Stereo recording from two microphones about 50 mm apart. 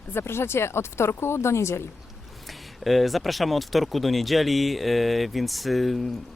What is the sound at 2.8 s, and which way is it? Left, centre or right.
Speech, centre.